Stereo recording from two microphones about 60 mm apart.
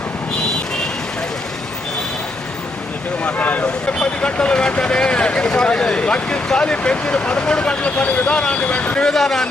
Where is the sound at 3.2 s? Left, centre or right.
Left.